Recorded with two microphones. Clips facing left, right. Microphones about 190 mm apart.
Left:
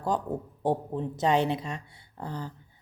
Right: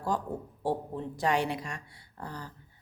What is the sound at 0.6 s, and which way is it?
A woman's voice, 20° left (ahead or behind).